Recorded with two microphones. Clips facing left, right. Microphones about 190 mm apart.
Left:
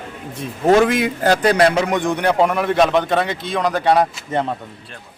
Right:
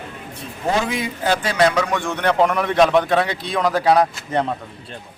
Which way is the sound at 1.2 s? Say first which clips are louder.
Left 3 dB; 40° left (ahead or behind).